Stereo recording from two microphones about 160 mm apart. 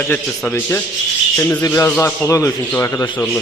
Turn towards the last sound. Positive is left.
turn(degrees=15)  # may be behind; listen again after turning